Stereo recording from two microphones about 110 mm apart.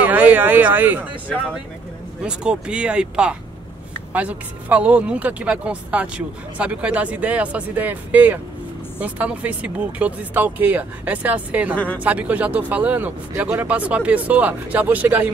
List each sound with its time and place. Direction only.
0.0 s speech: 15° right (ahead or behind)
2.2 s speech: 10° right (ahead or behind)
11.7 s speech: 15° left (ahead or behind)
12.0 s speech: 15° right (ahead or behind)